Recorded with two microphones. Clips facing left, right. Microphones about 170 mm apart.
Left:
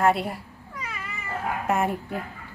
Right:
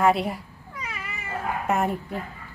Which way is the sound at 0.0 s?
Centre (ahead or behind).